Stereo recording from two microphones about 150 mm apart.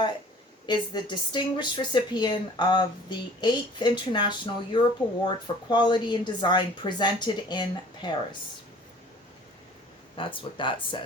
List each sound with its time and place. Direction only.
0.7 s speech: 30° left (ahead or behind)
10.2 s speech: 35° left (ahead or behind)